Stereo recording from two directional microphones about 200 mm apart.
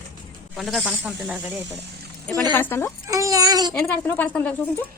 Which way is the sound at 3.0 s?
15° right (ahead or behind).